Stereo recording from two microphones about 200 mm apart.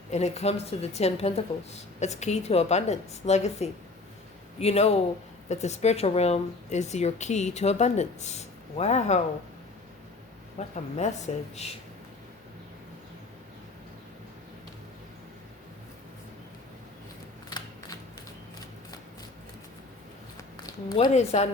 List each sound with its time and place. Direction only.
0.1 s a woman's voice: 35° left (ahead or behind)
10.6 s a woman's voice: 35° left (ahead or behind)
20.7 s speech: 20° left (ahead or behind)
21.1 s a woman's voice: 35° left (ahead or behind)